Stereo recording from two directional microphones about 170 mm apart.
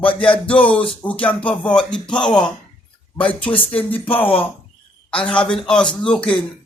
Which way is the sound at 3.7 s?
10° left (ahead or behind).